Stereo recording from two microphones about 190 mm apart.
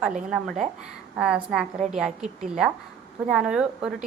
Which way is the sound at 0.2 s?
Centre (ahead or behind).